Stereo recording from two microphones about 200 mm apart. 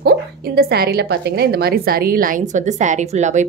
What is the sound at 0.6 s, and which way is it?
A woman's voice, 55° right (ahead or behind).